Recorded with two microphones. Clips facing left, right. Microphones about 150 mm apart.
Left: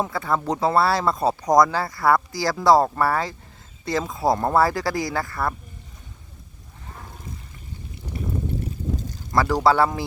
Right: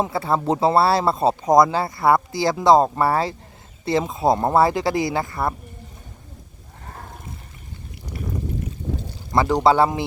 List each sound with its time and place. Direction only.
0.0 s speech: 30° right (ahead or behind)
9.3 s speech: 20° right (ahead or behind)